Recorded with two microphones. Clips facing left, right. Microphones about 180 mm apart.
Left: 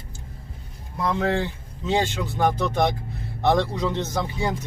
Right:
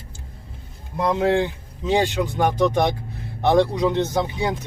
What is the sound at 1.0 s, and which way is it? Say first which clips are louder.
Speech: right 4 dB; 20° right (ahead or behind).